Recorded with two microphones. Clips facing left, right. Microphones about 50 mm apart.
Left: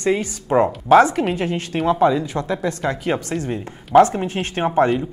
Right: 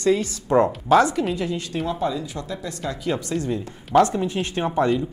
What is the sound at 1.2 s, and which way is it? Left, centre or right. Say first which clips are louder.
Speech: left 3 dB; left.